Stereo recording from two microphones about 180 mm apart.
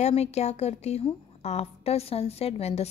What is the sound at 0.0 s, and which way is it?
A woman's voice, 35° left (ahead or behind).